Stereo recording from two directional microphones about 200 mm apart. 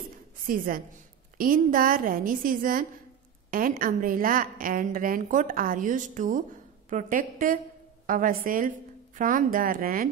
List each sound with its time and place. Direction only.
0.5 s a woman's voice: 45° right (ahead or behind)